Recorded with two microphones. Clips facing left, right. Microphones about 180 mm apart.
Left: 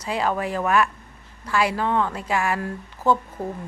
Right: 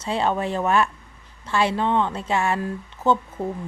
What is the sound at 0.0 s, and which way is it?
Speech, 25° right (ahead or behind).